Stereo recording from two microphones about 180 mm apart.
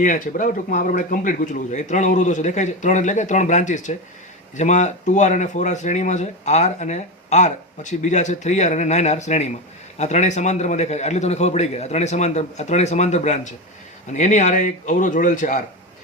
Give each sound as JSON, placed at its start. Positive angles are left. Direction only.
{"t": 0.0, "sound": "speech", "side_deg": 45}